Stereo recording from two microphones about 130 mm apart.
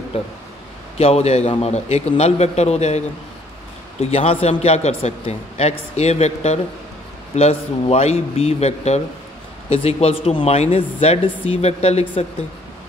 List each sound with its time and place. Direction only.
0.9 s a man's voice: 55° left (ahead or behind)
4.0 s a man's voice: 50° left (ahead or behind)